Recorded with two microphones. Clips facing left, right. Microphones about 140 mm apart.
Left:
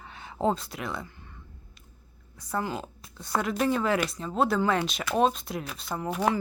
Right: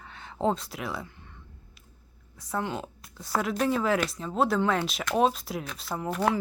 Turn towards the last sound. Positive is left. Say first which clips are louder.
# even
turn(degrees=0)  # may be behind; listen again after turning